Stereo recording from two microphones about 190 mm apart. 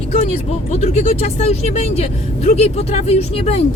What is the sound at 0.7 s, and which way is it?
Speech, 35° left (ahead or behind).